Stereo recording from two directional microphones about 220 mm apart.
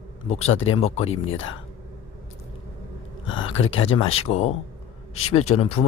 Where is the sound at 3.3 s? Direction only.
60° left (ahead or behind).